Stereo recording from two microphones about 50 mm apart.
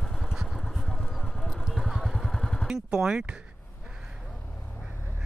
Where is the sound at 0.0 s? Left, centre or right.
Centre.